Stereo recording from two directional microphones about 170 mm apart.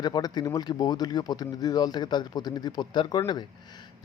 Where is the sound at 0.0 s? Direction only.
25° left (ahead or behind).